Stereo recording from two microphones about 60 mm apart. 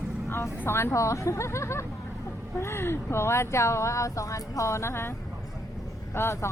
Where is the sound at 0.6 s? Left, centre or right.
Left.